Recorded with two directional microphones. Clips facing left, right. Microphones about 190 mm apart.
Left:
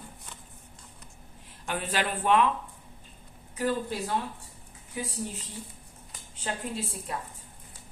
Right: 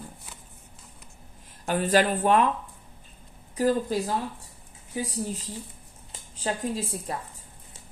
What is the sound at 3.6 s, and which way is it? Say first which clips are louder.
A woman's voice: right 5 dB; 40° right (ahead or behind).